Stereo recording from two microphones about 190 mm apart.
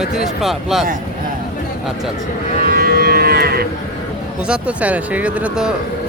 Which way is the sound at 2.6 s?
55° right (ahead or behind).